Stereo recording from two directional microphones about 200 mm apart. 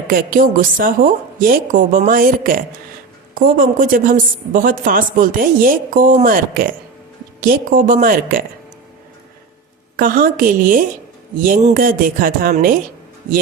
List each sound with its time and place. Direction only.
0.1 s a woman's voice: 45° right (ahead or behind)
10.0 s a woman's voice: 45° right (ahead or behind)